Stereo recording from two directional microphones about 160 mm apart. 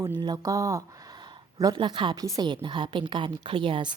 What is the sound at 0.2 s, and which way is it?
A woman's voice, 25° right (ahead or behind).